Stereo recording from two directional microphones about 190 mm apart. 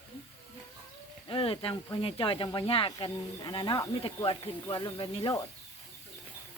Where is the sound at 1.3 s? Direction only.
30° left (ahead or behind).